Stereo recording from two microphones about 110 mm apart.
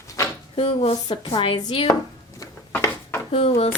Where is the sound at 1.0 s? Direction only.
45° left (ahead or behind).